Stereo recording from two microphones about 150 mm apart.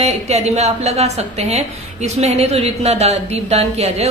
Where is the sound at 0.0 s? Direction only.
45° right (ahead or behind).